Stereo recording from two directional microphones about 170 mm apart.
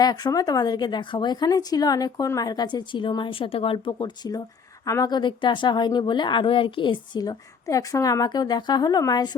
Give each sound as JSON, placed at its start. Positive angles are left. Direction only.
{"t": 0.0, "sound": "speech", "side_deg": 25}
{"t": 3.9, "sound": "speech", "side_deg": 25}